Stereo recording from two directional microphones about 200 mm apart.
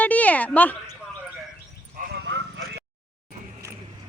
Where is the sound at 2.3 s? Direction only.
60° right (ahead or behind).